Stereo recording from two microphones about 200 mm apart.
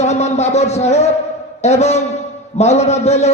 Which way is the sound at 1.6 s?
35° left (ahead or behind).